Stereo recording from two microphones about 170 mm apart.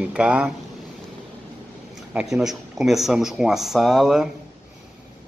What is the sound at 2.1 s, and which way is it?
Speech, 5° right (ahead or behind).